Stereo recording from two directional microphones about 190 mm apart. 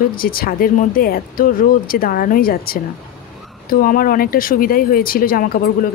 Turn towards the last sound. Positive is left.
turn(degrees=50)  # may be behind; listen again after turning